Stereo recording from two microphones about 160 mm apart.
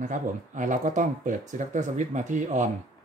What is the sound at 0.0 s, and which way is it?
Speech, 50° right (ahead or behind).